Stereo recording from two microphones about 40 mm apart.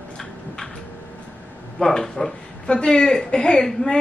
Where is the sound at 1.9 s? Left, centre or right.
Centre.